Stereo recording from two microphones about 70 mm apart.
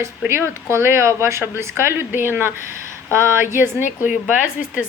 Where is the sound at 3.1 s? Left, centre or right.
Right.